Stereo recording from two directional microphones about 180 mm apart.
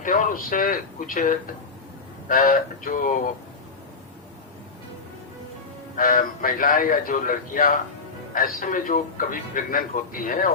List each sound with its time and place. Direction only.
0.0 s a man's voice: 50° left (ahead or behind)
6.0 s a man's voice: 50° left (ahead or behind)